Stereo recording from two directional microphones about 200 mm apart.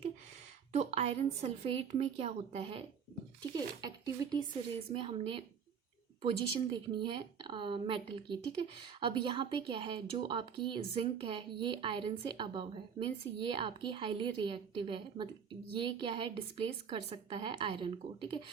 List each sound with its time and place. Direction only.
0.7 s speech: 35° right (ahead or behind)
6.5 s speech: 25° right (ahead or behind)